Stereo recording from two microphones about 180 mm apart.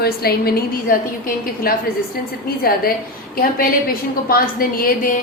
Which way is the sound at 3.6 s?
55° left (ahead or behind).